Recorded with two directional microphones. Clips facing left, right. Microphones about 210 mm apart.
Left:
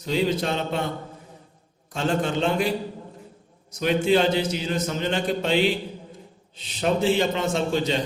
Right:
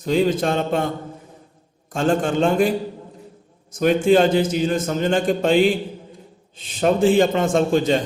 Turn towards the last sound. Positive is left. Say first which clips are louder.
# right 6 dB
turn(degrees=-50)  # may be behind; listen again after turning